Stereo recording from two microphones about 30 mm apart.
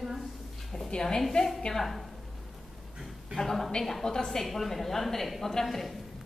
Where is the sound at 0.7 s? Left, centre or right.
Left.